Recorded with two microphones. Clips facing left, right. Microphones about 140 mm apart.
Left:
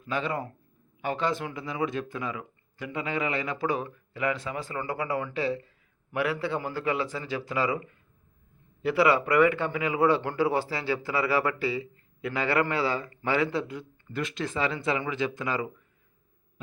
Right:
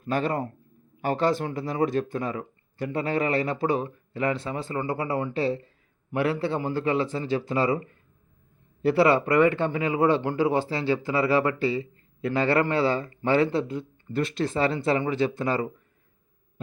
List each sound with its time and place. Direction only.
0.0 s speech: 45° right (ahead or behind)
8.8 s speech: 30° right (ahead or behind)